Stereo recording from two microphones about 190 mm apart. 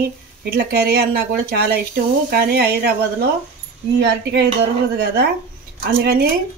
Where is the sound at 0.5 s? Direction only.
55° right (ahead or behind).